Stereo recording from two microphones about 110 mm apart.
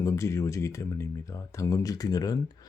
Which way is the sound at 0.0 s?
25° left (ahead or behind).